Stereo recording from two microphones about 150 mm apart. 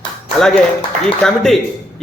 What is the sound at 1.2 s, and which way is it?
Speech, 5° left (ahead or behind).